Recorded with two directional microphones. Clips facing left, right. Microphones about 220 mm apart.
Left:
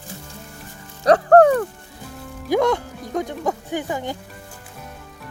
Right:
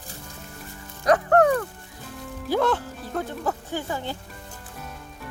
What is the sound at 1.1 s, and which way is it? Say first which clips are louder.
Music: left 6 dB; 30° left (ahead or behind).